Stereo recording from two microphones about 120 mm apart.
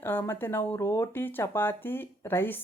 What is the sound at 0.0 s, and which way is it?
Speech, 15° left (ahead or behind).